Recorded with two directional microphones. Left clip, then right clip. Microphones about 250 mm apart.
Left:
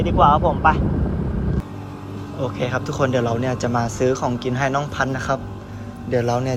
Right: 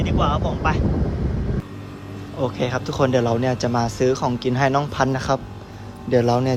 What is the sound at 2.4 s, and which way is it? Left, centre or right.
Speech, centre.